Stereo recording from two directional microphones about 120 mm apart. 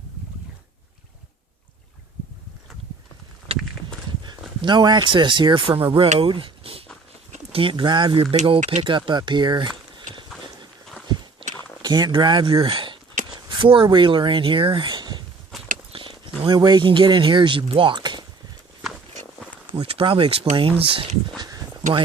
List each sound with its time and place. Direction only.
3.5 s walk: 55° right (ahead or behind)
4.2 s speech: 40° right (ahead or behind)
6.1 s a sound: 45° right (ahead or behind)
7.5 s speech: 45° right (ahead or behind)
11.8 s speech: 35° right (ahead or behind)
15.9 s a sound: 50° right (ahead or behind)
16.6 s speech: 40° right (ahead or behind)
19.7 s speech: 45° right (ahead or behind)
21.3 s a sound: 35° right (ahead or behind)